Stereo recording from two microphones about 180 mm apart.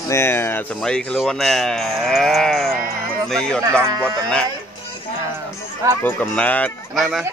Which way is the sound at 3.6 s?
15° right (ahead or behind).